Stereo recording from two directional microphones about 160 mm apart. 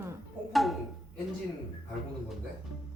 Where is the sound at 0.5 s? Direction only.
Centre (ahead or behind).